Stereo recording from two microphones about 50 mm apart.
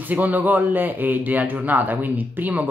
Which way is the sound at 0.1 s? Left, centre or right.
Right.